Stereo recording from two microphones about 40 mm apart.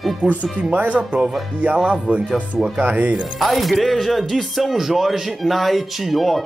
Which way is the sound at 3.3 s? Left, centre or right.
Centre.